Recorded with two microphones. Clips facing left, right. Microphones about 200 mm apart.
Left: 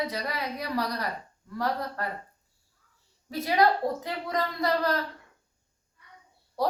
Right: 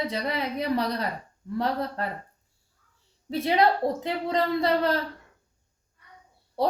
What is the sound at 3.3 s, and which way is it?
A woman's voice, 25° right (ahead or behind).